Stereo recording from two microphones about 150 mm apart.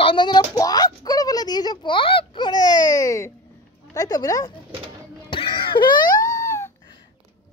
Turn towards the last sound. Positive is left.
turn(degrees=20)  # may be behind; listen again after turning